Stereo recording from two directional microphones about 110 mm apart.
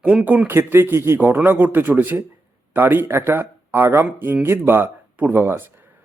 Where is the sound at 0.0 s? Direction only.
10° right (ahead or behind).